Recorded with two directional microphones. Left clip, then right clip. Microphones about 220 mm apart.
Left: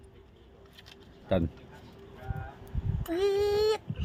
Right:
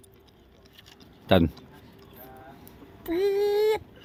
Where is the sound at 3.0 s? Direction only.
30° left (ahead or behind).